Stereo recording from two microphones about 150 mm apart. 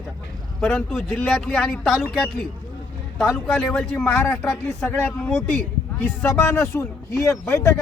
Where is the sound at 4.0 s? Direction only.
15° left (ahead or behind).